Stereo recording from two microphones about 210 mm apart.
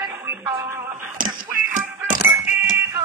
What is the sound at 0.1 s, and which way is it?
Music, 10° right (ahead or behind).